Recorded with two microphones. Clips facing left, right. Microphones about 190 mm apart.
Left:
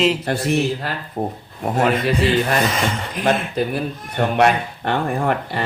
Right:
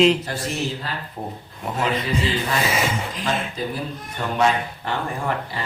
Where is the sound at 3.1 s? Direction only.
60° left (ahead or behind).